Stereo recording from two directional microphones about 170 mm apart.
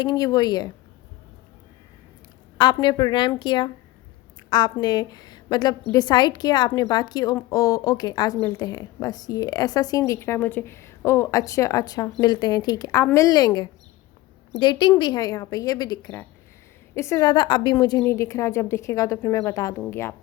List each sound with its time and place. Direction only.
0.0 s a woman's voice: 25° left (ahead or behind)
2.8 s a woman's voice: 25° left (ahead or behind)